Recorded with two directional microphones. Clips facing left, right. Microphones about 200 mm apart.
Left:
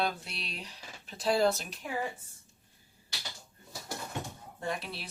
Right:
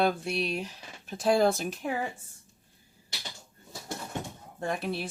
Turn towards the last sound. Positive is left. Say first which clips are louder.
# right 5 dB
turn(degrees=-50)  # may be behind; listen again after turning